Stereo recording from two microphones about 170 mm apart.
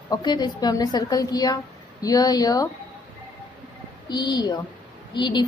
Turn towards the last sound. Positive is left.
turn(degrees=25)  # may be behind; listen again after turning